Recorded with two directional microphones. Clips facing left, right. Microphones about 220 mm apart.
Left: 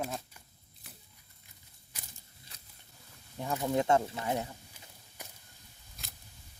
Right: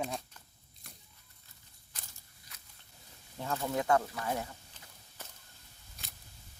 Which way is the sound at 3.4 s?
15° left (ahead or behind).